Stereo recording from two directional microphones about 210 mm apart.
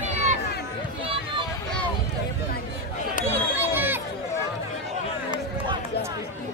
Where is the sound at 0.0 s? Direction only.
35° right (ahead or behind).